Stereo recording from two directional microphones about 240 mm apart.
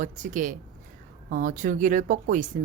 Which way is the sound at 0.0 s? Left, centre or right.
Right.